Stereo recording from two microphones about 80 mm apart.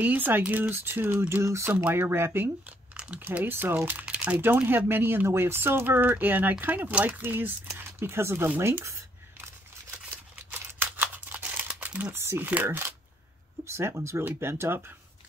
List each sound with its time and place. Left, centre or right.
0.0 s speech: right
1.4 s speech: right
10.5 s crumpling: right
12.6 s speech: right